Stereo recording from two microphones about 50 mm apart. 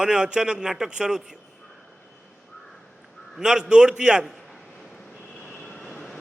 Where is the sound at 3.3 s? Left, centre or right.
Centre.